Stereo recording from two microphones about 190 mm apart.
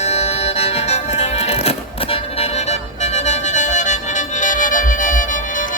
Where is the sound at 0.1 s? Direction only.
35° left (ahead or behind).